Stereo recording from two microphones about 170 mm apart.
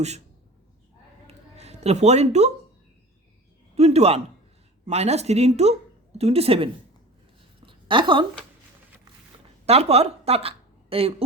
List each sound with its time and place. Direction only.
1.5 s speech: 40° right (ahead or behind)
3.8 s a woman's voice: 40° right (ahead or behind)
7.6 s a sound: 30° right (ahead or behind)
9.6 s a woman's voice: 40° right (ahead or behind)